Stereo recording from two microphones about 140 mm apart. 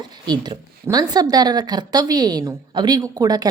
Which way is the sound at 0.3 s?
30° right (ahead or behind).